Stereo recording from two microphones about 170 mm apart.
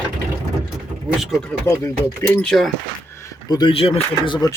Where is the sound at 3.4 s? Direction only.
25° left (ahead or behind).